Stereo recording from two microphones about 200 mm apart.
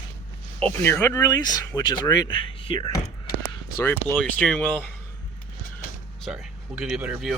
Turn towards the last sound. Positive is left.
turn(degrees=-5)  # may be behind; listen again after turning